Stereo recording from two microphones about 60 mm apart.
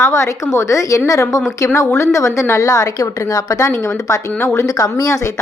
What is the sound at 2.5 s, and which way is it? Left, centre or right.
A woman's voice, left.